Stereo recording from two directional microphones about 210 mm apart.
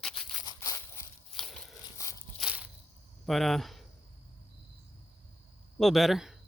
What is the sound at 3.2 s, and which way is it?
Speech, centre (ahead or behind).